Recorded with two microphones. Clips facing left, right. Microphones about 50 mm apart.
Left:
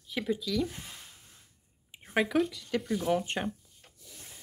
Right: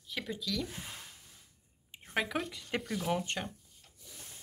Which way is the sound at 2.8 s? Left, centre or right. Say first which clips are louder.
Left 5 dB; centre.